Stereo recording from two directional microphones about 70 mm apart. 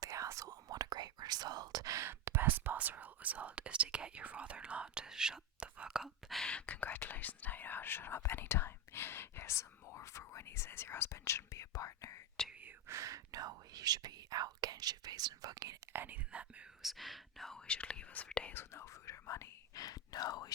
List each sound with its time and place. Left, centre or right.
0.0 s whispering: right
2.0 s speech: right; by 6.3 s centre
6.3 s speech: centre; by 12.2 s left
12.9 s speech: right
15.9 s speech: right
16.8 s speech: centre
17.7 s speech: centre
18.5 s speech: left
19.7 s speech: left